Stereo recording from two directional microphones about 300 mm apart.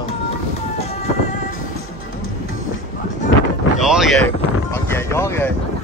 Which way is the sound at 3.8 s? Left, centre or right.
Centre.